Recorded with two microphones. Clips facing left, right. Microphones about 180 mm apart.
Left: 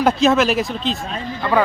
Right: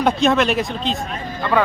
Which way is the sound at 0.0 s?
Centre (ahead or behind).